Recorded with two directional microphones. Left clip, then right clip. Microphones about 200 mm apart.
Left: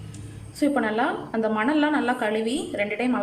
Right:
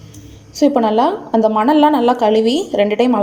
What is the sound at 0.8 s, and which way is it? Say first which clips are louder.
A woman's voice: right 10 dB; 25° right (ahead or behind).